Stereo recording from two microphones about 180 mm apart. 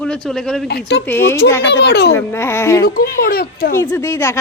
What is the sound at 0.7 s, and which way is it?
Speech, 65° left (ahead or behind).